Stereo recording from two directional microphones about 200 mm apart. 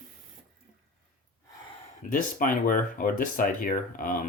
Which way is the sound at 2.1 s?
45° left (ahead or behind).